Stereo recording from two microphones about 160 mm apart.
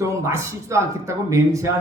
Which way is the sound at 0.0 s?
20° right (ahead or behind).